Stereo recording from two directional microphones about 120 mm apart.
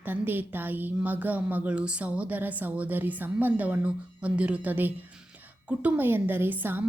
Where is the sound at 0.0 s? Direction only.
15° right (ahead or behind).